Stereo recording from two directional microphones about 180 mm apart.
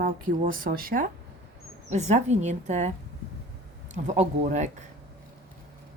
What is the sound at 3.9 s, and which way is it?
Speech, 40° right (ahead or behind).